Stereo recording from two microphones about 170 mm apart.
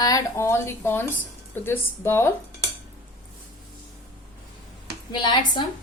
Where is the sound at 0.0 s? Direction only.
20° left (ahead or behind).